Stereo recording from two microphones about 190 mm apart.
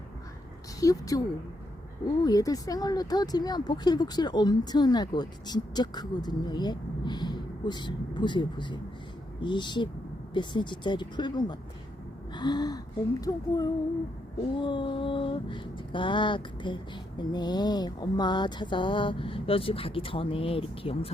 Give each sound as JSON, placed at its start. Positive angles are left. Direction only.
{"t": 0.8, "sound": "a woman's voice", "side_deg": 20}
{"t": 2.2, "sound": "a woman's voice", "side_deg": 20}
{"t": 12.3, "sound": "gasp", "side_deg": 20}
{"t": 13.2, "sound": "a woman's voice", "side_deg": 20}